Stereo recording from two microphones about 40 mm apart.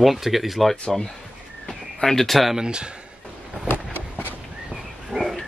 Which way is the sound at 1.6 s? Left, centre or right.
Centre.